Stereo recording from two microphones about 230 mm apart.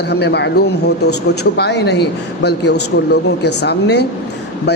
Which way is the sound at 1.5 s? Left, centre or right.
Left.